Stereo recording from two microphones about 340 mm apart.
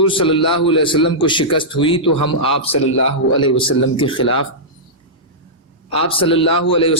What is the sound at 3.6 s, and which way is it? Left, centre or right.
Speech, left.